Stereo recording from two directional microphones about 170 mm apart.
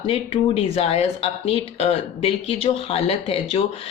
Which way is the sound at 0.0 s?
35° left (ahead or behind).